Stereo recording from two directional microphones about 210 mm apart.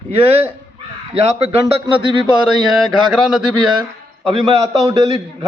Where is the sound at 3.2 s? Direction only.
Centre (ahead or behind).